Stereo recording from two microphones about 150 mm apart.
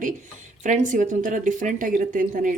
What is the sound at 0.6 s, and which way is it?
Speech, 55° right (ahead or behind).